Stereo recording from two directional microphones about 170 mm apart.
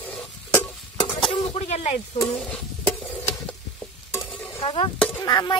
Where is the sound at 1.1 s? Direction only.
35° left (ahead or behind).